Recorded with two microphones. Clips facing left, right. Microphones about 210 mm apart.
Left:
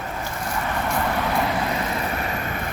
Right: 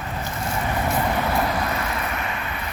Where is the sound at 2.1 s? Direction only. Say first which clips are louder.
Left 2 dB; 40° left (ahead or behind).